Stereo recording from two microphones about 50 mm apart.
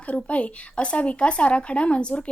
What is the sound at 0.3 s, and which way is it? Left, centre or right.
A woman's voice, left.